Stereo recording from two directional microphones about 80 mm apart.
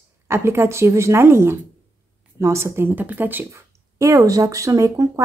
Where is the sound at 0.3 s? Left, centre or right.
Right.